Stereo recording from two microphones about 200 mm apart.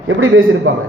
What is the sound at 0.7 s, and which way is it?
Speech, 90° right.